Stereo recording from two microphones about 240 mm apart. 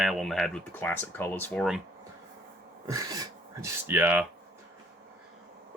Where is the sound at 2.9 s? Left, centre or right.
Centre.